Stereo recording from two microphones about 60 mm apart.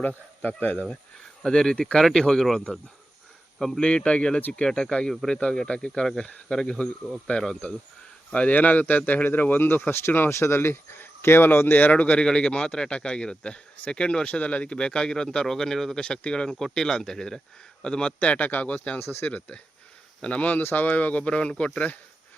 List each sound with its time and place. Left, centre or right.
0.0 s speech: left
1.4 s speech: centre
8.3 s speech: left
12.2 s speech: centre